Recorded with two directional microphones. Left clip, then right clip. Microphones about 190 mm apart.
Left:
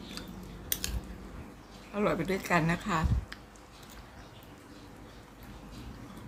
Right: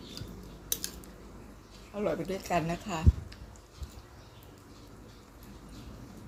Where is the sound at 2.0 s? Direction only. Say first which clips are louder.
Left 2 dB; 40° left (ahead or behind).